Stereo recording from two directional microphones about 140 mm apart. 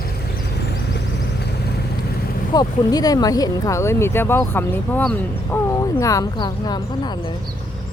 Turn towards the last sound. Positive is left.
turn(degrees=30)  # may be behind; listen again after turning